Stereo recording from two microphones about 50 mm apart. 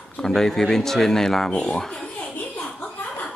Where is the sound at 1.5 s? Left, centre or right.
Left.